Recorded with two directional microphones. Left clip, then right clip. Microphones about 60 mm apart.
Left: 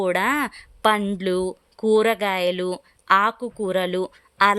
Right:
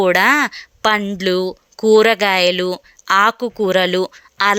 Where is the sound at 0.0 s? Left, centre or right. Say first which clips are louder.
Right 8 dB; right.